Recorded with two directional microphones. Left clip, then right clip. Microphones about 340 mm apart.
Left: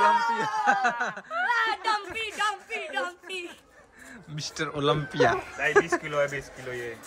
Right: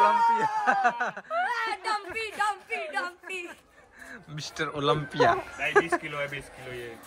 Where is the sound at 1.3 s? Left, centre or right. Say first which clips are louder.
Left 4 dB; centre.